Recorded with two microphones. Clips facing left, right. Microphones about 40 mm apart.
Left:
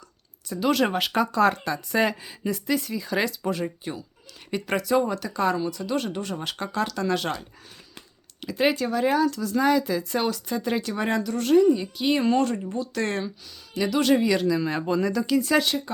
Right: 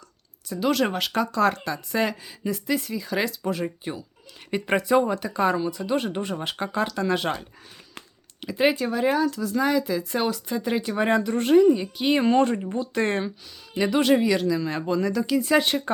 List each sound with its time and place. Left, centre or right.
0.4 s speech: centre
4.5 s speech: centre
11.2 s speech: right
14.0 s speech: centre
15.4 s speech: centre